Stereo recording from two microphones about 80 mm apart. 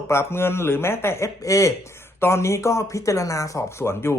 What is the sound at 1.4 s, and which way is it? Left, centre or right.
Speech, left.